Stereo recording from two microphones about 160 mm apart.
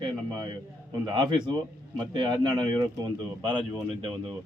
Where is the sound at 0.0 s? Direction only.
25° right (ahead or behind).